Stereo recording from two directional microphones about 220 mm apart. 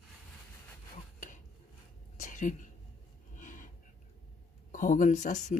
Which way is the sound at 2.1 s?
35° left (ahead or behind).